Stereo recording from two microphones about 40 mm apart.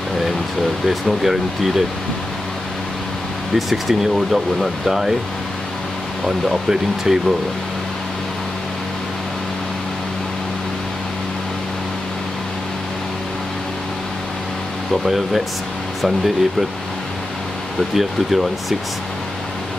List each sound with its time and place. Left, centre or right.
0.8 s speech: centre
3.5 s speech: centre
6.2 s speech: centre
15.0 s speech: centre
17.9 s speech: centre